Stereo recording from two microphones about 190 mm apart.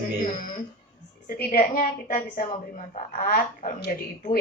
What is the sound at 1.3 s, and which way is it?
A woman's voice, 45° left (ahead or behind).